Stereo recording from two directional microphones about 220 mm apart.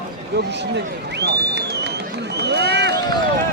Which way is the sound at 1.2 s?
50° right (ahead or behind).